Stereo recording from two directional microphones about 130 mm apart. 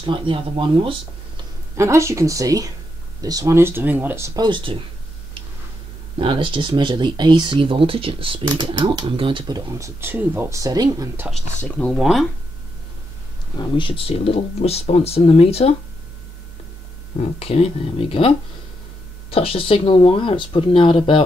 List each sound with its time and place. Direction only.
0.0 s speech: 40° right (ahead or behind)
1.8 s speech: 20° right (ahead or behind)
4.5 s speech: 40° right (ahead or behind)
6.1 s speech: 40° right (ahead or behind)
9.8 s speech: 20° right (ahead or behind)
11.9 s speech: centre (ahead or behind)
13.6 s speech: 40° left (ahead or behind)
17.2 s speech: 55° left (ahead or behind)
19.3 s speech: 45° left (ahead or behind)